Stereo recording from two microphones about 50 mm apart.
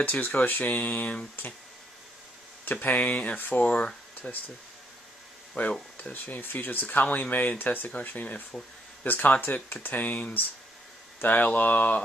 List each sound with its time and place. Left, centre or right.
0.0 s speech: left
2.6 s speech: left
5.6 s speech: left